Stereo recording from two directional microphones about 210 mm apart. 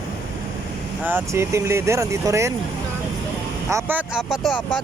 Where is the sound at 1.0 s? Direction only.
10° right (ahead or behind).